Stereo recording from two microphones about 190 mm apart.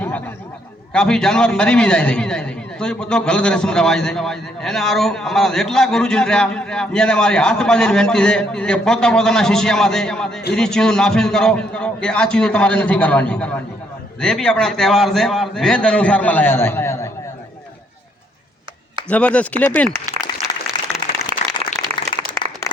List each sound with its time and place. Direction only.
0.9 s a man's voice: 5° left (ahead or behind)
19.0 s speech: 5° left (ahead or behind)
20.2 s applause: 25° left (ahead or behind)
21.9 s a sound: 30° right (ahead or behind)